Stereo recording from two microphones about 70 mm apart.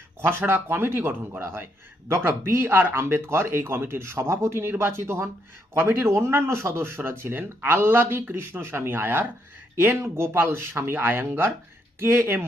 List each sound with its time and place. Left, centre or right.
0.2 s speech: right